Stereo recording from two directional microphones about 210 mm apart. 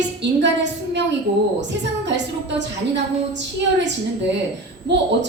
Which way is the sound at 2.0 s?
55° right (ahead or behind).